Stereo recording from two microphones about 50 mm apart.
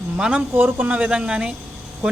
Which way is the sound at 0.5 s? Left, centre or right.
Right.